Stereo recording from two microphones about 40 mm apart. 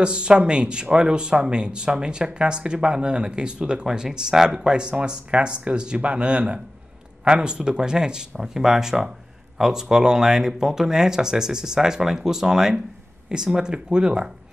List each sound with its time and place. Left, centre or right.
0.0 s speech: right